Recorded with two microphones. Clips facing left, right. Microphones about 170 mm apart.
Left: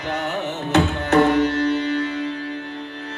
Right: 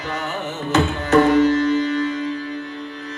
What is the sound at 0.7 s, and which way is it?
Tabla, 65° left (ahead or behind).